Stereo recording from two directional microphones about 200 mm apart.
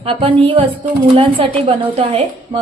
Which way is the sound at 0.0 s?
25° right (ahead or behind).